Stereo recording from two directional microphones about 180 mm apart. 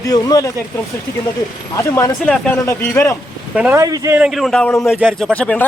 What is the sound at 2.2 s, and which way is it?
Speech, 5° left (ahead or behind).